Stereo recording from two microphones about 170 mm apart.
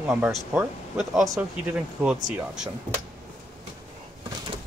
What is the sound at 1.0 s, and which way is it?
Speech, centre (ahead or behind).